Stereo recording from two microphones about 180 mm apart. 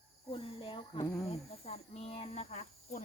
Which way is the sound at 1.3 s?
35° left (ahead or behind).